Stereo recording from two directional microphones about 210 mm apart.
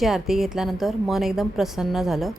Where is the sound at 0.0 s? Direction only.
Centre (ahead or behind).